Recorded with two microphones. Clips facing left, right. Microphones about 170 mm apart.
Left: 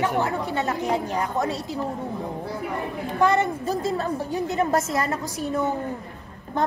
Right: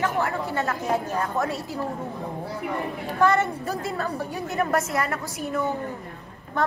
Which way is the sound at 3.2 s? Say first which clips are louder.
Even; 15° left (ahead or behind).